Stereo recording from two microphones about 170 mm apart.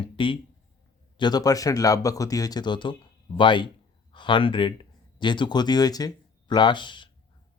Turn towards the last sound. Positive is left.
turn(degrees=30)  # may be behind; listen again after turning